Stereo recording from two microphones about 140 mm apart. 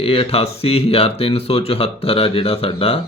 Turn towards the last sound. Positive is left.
turn(degrees=45)  # may be behind; listen again after turning